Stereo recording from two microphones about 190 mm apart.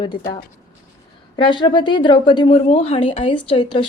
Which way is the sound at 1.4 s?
25° left (ahead or behind).